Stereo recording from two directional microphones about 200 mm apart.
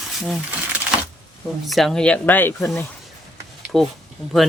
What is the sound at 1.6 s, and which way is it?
Speech, centre (ahead or behind).